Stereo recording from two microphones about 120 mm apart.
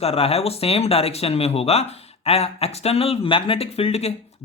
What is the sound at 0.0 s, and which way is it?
A man's voice, 60° left (ahead or behind).